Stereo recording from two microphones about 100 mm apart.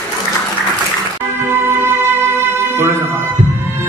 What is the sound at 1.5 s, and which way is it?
Music, 25° right (ahead or behind).